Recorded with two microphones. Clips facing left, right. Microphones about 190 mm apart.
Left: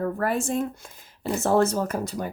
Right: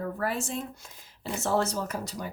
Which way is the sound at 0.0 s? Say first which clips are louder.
Left 6 dB; 50° left (ahead or behind).